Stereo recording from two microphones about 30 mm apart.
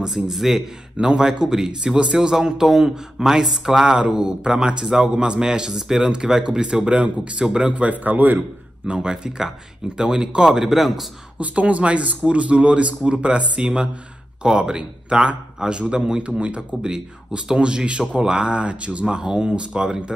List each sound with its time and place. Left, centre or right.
0.0 s speech: centre
1.0 s speech: right; by 3.8 s centre
4.1 s speech: right
6.4 s speech: right
7.7 s a man's voice: right
9.0 s speech: right
10.6 s a man's voice: centre
11.3 s speech: right
16.8 s speech: right
17.6 s speech: right
19.1 s speech: right